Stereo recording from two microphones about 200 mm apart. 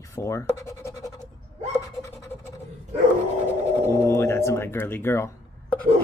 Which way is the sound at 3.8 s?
15° left (ahead or behind).